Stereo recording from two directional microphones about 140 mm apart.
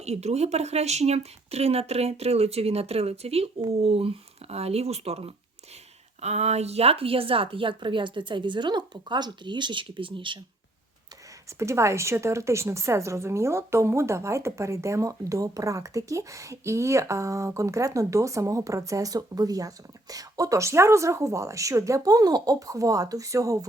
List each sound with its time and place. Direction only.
0.0 s a woman's voice: 50° right (ahead or behind)
11.4 s a woman's voice: 20° right (ahead or behind)